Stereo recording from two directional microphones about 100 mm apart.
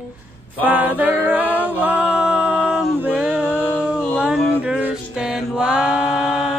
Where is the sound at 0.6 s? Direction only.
15° right (ahead or behind).